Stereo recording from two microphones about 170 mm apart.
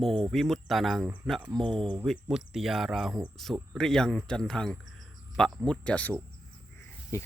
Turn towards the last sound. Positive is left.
turn(degrees=15)  # may be behind; listen again after turning